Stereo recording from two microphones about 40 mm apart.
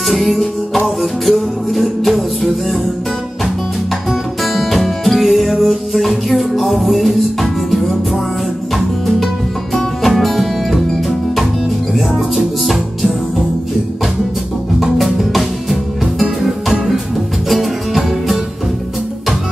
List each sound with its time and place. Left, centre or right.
0.1 s music: centre
4.1 s music: centre
14.8 s music: centre